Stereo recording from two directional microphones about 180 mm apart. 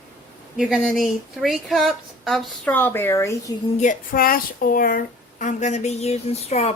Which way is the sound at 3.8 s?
50° left (ahead or behind).